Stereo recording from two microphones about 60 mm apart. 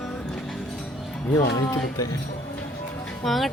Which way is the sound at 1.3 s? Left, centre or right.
Left.